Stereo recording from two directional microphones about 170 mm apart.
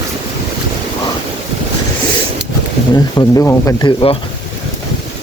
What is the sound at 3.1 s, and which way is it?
Speech, 15° left (ahead or behind).